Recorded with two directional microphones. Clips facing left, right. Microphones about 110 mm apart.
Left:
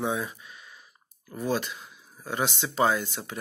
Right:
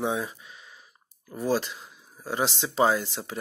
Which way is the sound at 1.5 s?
25° right (ahead or behind).